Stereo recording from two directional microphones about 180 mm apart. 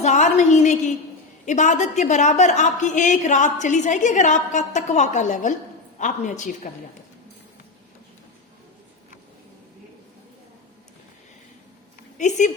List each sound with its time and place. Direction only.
0.0 s a sound: 40° left (ahead or behind)
1.5 s a woman's voice: 40° left (ahead or behind)
12.1 s speech: 40° left (ahead or behind)